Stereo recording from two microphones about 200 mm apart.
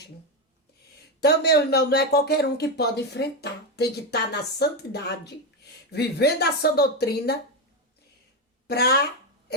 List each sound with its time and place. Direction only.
1.2 s speech: 55° left (ahead or behind)
8.6 s speech: 55° left (ahead or behind)
9.5 s hiccup: 55° left (ahead or behind)